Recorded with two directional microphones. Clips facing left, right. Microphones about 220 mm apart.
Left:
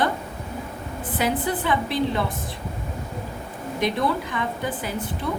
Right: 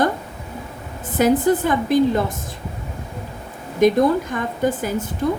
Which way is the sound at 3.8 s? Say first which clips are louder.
Right 9 dB; 45° right (ahead or behind).